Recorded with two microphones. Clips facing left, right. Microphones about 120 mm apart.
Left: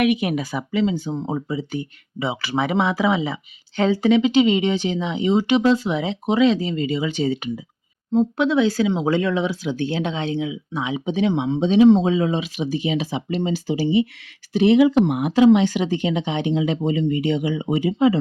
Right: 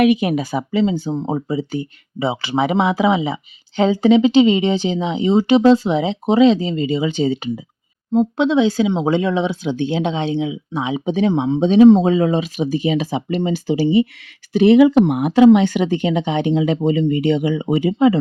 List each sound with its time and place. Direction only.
0.0 s speech: 30° right (ahead or behind)
11.0 s speech: 40° right (ahead or behind); by 18.2 s 60° right (ahead or behind)